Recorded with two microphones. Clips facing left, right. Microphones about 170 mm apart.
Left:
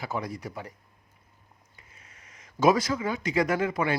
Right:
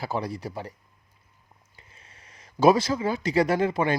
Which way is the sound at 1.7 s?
30° right (ahead or behind).